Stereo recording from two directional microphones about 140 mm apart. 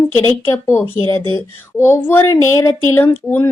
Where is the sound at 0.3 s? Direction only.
20° left (ahead or behind).